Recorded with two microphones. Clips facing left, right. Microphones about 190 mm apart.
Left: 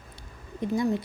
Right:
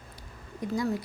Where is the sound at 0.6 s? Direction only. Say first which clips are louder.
Left 3 dB; 25° left (ahead or behind).